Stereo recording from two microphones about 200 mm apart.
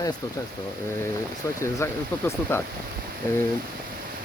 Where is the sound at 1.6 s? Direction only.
15° left (ahead or behind).